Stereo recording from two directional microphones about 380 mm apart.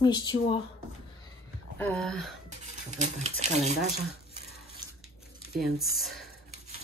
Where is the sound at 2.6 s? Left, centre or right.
Centre.